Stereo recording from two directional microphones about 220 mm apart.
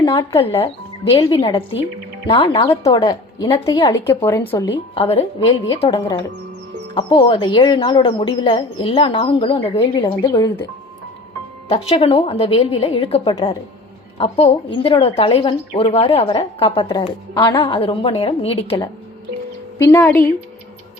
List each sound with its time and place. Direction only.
0.0 s a woman's voice: 20° left (ahead or behind)
4.9 s a woman's voice: 25° left (ahead or behind)
7.2 s a woman's voice: 25° left (ahead or behind)
10.2 s a woman's voice: 15° left (ahead or behind)
11.7 s a woman's voice: 25° left (ahead or behind)
17.3 s a woman's voice: 10° left (ahead or behind)
17.6 s a woman's voice: 25° left (ahead or behind)
19.8 s a woman's voice: 15° left (ahead or behind)